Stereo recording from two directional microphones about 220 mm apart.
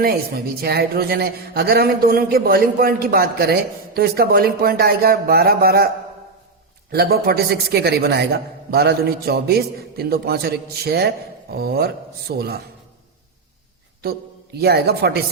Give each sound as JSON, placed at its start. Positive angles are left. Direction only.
{"t": 0.0, "sound": "a woman's voice", "side_deg": -45}
{"t": 6.9, "sound": "a woman's voice", "side_deg": -45}
{"t": 14.0, "sound": "a man's voice", "side_deg": -45}